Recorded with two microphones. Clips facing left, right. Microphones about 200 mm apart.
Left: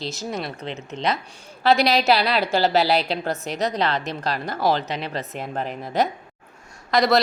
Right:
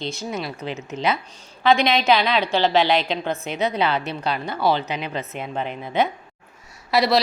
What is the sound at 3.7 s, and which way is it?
Speech, 5° right (ahead or behind).